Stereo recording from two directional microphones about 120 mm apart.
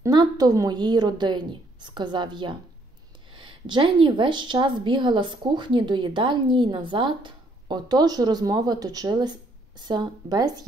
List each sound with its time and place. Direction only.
0.0 s a woman's voice: 35° right (ahead or behind)